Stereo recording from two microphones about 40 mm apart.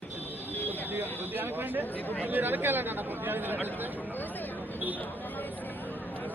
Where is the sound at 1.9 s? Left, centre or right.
Left.